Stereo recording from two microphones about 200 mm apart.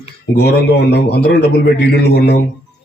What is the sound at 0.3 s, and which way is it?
A man's voice, 55° left (ahead or behind).